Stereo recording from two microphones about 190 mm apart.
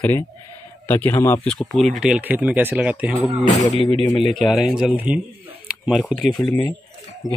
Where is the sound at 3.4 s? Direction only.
25° left (ahead or behind).